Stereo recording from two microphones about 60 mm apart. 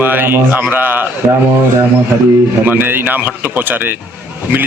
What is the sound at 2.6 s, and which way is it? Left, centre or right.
A man's voice, right.